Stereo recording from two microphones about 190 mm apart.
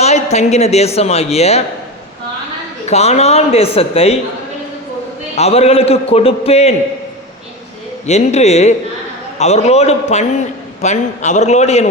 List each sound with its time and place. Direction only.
0.0 s speech: 35° left (ahead or behind)
2.8 s speech: 35° left (ahead or behind)
5.4 s speech: 35° left (ahead or behind)
8.0 s speech: 35° left (ahead or behind)